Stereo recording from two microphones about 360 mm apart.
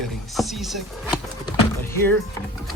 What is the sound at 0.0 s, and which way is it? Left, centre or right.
Power windows, centre.